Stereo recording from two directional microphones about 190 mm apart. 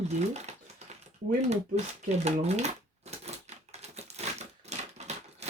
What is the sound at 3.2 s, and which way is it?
Typewriter, 35° right (ahead or behind).